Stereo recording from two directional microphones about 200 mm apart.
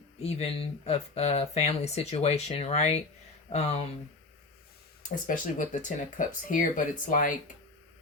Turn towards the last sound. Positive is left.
turn(degrees=40)  # may be behind; listen again after turning